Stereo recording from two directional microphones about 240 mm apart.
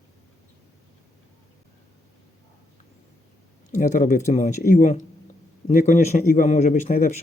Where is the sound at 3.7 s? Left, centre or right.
Left.